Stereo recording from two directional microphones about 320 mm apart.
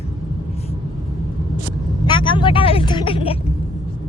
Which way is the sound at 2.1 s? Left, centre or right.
Centre.